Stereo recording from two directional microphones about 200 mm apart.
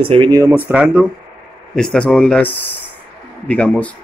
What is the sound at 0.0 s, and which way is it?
Speech, 25° right (ahead or behind).